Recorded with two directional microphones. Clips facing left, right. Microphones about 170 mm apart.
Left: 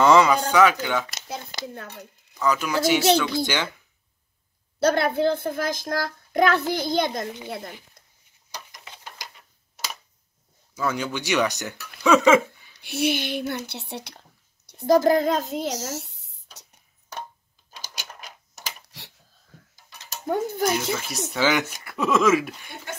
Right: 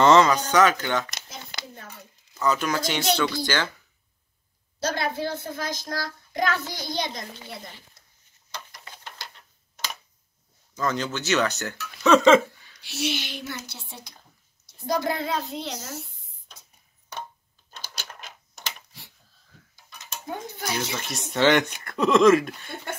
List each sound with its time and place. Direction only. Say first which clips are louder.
0.0 s speech: even; 10° left (ahead or behind)
1.5 s a sound: left 6 dB; 60° left (ahead or behind)
2.6 s speech: left 5 dB; 10° left (ahead or behind)
4.8 s child singing: left 7 dB; 60° left (ahead or behind)
8.5 s a sound: even; 15° left (ahead or behind)
10.7 s speech: even; 10° left (ahead or behind)
12.3 s laughter: right 1 dB; 10° left (ahead or behind)
12.8 s child singing: left 5 dB; 55° left (ahead or behind)
15.0 s a child's voice: left 7 dB; 45° left (ahead or behind)
15.7 s speech: left 5 dB; 75° left (ahead or behind)
17.6 s typewriter: even; 10° left (ahead or behind)
18.9 s a sound: left 3 dB; 75° left (ahead or behind)
20.2 s a child's voice: left 10 dB; 50° left (ahead or behind)
20.7 s speech: left 4 dB; centre (ahead or behind)